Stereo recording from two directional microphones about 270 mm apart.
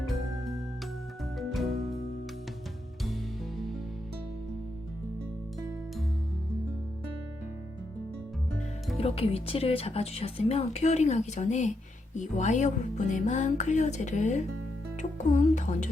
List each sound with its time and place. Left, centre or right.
1.4 s music: centre
9.0 s speech: left